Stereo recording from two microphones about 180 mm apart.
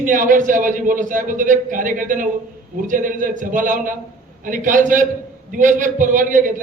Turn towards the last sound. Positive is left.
turn(degrees=-45)  # may be behind; listen again after turning